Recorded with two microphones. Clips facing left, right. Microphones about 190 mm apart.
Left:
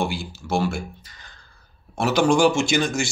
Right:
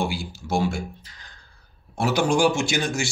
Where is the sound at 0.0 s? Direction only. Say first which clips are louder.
Left 1 dB; 10° right (ahead or behind).